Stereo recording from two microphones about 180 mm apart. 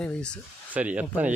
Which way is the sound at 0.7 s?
10° right (ahead or behind).